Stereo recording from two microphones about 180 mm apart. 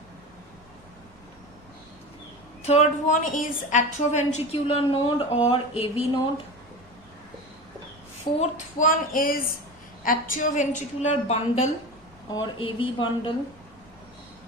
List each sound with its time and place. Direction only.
2.6 s a woman's voice: 40° left (ahead or behind)
8.4 s a woman's voice: 45° left (ahead or behind); by 13.3 s 30° left (ahead or behind)